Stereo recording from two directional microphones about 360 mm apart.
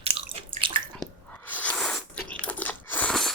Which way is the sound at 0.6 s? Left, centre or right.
Centre.